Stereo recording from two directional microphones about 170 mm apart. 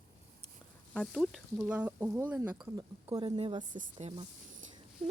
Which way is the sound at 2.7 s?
25° right (ahead or behind).